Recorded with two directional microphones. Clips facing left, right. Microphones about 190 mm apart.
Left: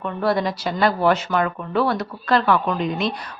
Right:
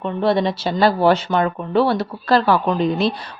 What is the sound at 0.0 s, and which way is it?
Speech, 25° right (ahead or behind).